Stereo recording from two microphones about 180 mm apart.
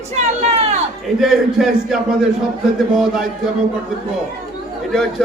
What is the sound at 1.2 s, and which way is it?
A man's voice, centre (ahead or behind).